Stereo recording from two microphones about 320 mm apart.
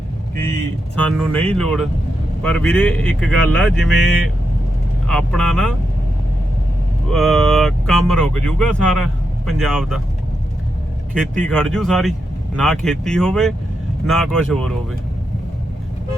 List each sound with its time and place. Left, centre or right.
0.3 s speech: centre
5.0 s speech: centre
7.1 s speech: centre
11.1 s speech: centre